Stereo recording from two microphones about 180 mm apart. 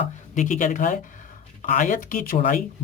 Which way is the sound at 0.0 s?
45° left (ahead or behind).